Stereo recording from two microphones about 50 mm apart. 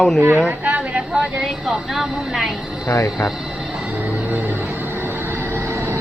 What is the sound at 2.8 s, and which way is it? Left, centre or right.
Speech, left.